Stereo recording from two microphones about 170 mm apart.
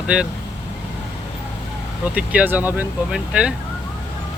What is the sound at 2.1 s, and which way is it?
Speech, 10° right (ahead or behind).